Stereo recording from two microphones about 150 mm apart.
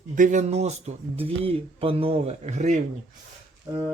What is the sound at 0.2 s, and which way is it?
Speech, 55° right (ahead or behind).